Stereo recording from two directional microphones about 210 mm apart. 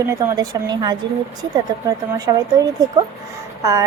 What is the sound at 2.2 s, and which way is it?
Speech, 15° right (ahead or behind).